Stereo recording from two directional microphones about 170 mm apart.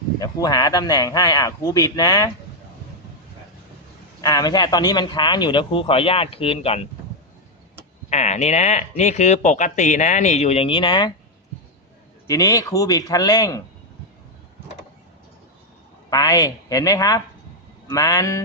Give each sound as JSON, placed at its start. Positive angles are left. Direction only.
{"t": 0.2, "sound": "speech", "side_deg": 25}
{"t": 4.2, "sound": "speech", "side_deg": 20}
{"t": 8.1, "sound": "speech", "side_deg": 40}
{"t": 12.3, "sound": "speech", "side_deg": 20}
{"t": 16.0, "sound": "speech", "side_deg": 20}